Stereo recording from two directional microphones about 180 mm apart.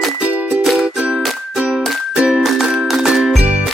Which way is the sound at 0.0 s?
5° right (ahead or behind).